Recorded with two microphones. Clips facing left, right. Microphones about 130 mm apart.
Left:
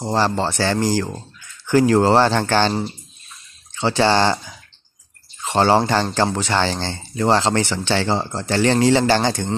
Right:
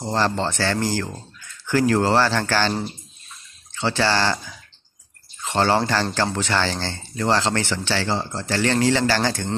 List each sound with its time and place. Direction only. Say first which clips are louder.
0.1 s speech: left 2 dB; 10° left (ahead or behind)
3.7 s speech: left 4 dB; 20° left (ahead or behind)